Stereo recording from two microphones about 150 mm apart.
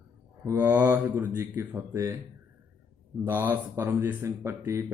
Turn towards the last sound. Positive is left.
turn(degrees=-20)  # may be behind; listen again after turning